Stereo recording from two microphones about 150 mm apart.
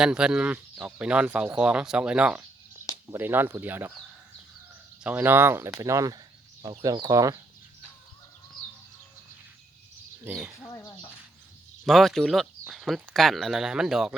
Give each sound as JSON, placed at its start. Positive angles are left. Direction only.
{"t": 0.0, "sound": "speech", "side_deg": -5}
{"t": 5.0, "sound": "speech", "side_deg": -10}
{"t": 10.2, "sound": "speech", "side_deg": -5}
{"t": 11.9, "sound": "speech", "side_deg": 0}